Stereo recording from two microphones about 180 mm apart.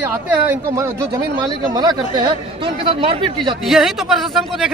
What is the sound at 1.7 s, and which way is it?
Speech, 20° right (ahead or behind).